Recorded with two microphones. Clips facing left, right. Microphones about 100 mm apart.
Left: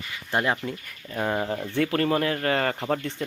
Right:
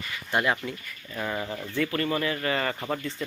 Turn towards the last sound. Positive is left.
turn(degrees=60)  # may be behind; listen again after turning